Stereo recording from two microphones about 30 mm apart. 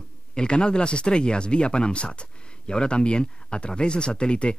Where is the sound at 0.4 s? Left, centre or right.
Left.